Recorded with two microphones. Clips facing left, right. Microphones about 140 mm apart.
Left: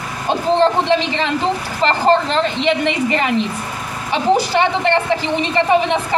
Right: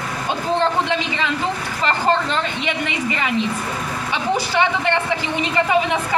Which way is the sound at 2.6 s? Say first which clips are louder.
Left 7 dB; 35° left (ahead or behind).